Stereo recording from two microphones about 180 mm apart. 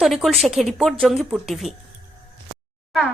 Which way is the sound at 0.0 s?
Centre (ahead or behind).